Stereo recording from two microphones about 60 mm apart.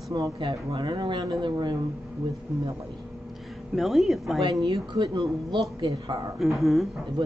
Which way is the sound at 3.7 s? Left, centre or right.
Centre.